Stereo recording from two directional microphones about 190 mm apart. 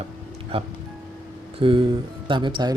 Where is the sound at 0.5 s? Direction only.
30° right (ahead or behind).